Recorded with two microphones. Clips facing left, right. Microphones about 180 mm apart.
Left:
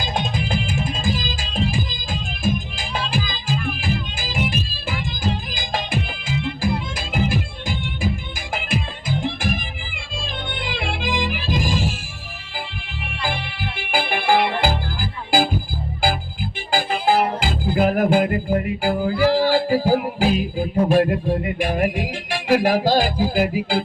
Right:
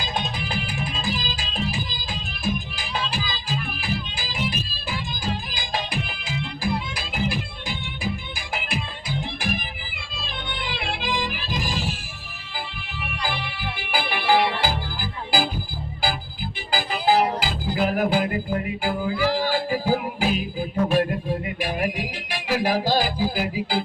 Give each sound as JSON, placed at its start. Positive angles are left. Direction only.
{"t": 0.0, "sound": "music", "side_deg": 45}
{"t": 10.6, "sound": "music", "side_deg": 45}
{"t": 13.2, "sound": "music", "side_deg": 45}
{"t": 16.7, "sound": "music", "side_deg": 45}